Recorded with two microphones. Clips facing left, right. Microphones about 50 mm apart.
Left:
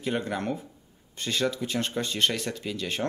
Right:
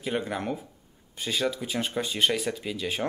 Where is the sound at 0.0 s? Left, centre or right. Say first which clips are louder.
Left 1 dB; centre.